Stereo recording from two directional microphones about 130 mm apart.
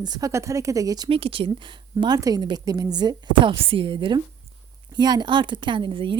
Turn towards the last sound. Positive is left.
turn(degrees=-40)  # may be behind; listen again after turning